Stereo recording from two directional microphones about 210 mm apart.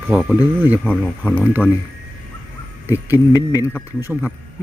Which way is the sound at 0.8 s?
5° left (ahead or behind).